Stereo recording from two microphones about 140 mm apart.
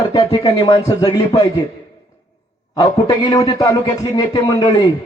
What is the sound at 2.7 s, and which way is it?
A man's voice, 25° left (ahead or behind).